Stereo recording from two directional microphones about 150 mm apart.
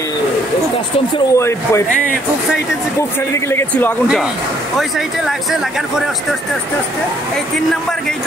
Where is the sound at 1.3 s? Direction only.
20° left (ahead or behind).